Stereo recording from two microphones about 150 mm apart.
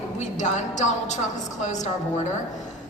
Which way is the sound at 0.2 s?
50° left (ahead or behind).